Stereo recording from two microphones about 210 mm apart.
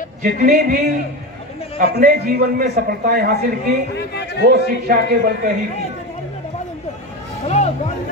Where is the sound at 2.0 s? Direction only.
45° right (ahead or behind).